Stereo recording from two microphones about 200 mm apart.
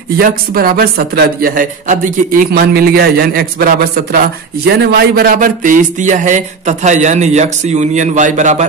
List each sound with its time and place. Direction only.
0.2 s a man's voice: 50° right (ahead or behind)